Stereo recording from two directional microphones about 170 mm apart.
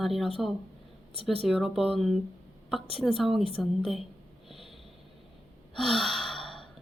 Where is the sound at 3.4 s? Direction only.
30° left (ahead or behind).